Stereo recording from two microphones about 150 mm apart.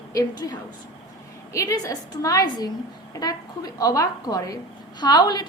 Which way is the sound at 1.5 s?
20° left (ahead or behind).